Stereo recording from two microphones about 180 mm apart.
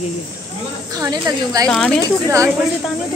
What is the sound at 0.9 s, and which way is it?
Speech, 20° right (ahead or behind).